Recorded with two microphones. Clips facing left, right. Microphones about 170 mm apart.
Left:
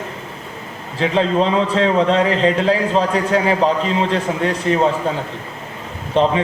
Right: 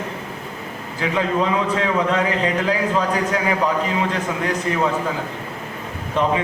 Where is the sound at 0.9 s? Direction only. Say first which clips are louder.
Left 4 dB; 25° left (ahead or behind).